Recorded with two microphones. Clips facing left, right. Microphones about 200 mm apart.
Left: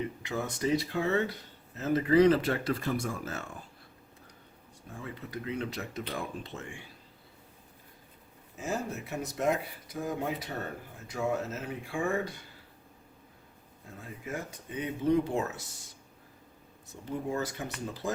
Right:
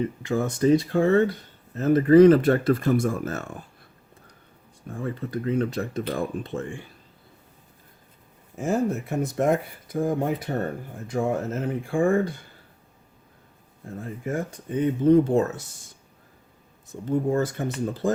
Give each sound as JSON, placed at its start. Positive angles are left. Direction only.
{"t": 0.2, "sound": "speech", "side_deg": -45}
{"t": 4.9, "sound": "speech", "side_deg": -50}
{"t": 8.5, "sound": "speech", "side_deg": -50}
{"t": 14.0, "sound": "speech", "side_deg": -50}
{"t": 16.8, "sound": "speech", "side_deg": -50}